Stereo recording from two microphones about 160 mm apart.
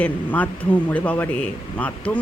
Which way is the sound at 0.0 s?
10° left (ahead or behind).